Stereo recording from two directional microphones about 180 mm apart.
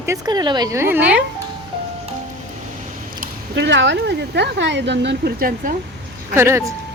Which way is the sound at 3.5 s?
80° right.